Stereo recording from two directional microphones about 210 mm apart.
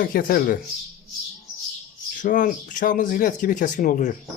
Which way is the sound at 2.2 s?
40° left (ahead or behind).